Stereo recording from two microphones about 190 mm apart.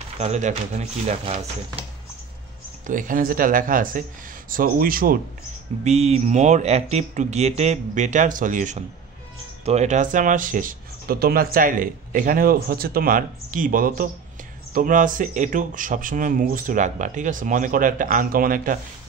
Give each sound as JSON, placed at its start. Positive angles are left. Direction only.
{"t": 0.2, "sound": "speech", "side_deg": -40}
{"t": 2.9, "sound": "speech", "side_deg": -45}
{"t": 5.9, "sound": "speech", "side_deg": -35}